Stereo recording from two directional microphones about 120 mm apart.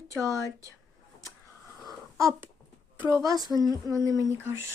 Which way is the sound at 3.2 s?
30° right (ahead or behind).